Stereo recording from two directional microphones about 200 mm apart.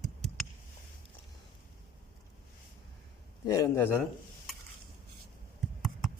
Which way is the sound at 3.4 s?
15° left (ahead or behind).